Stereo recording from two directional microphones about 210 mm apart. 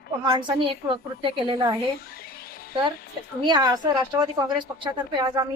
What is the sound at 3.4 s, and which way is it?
A woman's voice, 20° right (ahead or behind).